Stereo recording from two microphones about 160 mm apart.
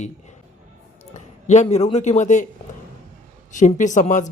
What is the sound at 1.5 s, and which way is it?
Speech, 45° left (ahead or behind).